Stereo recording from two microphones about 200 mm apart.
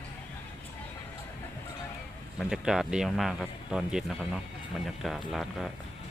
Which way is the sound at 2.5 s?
Centre (ahead or behind).